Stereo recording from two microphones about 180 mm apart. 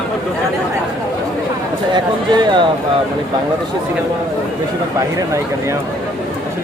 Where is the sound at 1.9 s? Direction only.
25° right (ahead or behind).